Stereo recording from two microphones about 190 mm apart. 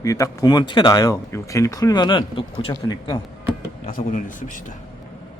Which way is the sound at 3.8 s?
45° left (ahead or behind).